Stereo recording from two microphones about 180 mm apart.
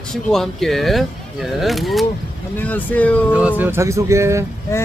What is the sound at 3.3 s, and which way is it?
Speech, 10° right (ahead or behind).